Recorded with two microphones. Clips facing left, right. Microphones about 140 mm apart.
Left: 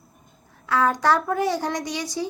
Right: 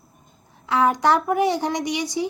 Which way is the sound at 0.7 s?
15° right (ahead or behind).